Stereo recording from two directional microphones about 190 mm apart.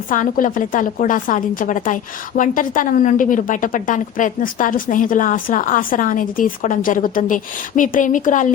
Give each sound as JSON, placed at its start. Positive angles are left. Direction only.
{"t": 0.1, "sound": "a woman's voice", "side_deg": 45}